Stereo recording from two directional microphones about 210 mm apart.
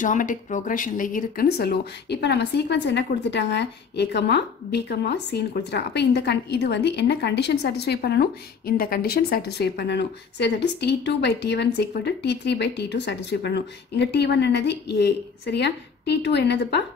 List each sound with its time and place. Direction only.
0.0 s speech: 40° left (ahead or behind); by 16.8 s 55° left (ahead or behind)